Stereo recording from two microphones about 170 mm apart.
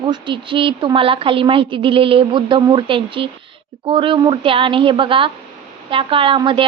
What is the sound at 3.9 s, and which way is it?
A woman's voice, 30° right (ahead or behind).